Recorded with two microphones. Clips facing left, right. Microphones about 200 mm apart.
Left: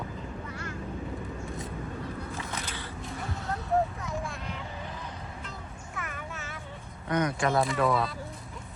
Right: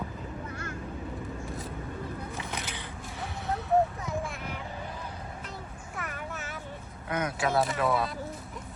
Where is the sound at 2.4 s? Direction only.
15° right (ahead or behind).